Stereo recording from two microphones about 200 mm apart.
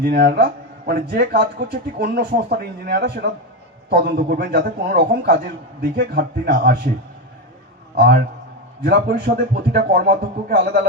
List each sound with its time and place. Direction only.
0.0 s a man's voice: 50° right (ahead or behind)
7.9 s a man's voice: 50° right (ahead or behind)